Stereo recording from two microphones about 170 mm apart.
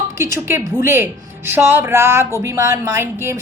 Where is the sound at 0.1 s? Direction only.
15° right (ahead or behind).